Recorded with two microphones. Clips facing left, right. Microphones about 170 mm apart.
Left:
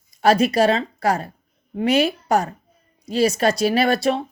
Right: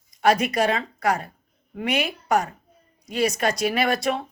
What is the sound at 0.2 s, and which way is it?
Speech, 30° left (ahead or behind).